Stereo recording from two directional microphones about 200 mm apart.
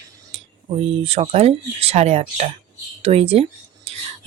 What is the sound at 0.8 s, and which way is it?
Speech, 30° right (ahead or behind).